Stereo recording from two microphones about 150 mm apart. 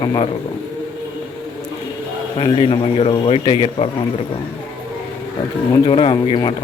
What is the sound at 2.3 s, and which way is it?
A man's voice, 40° left (ahead or behind).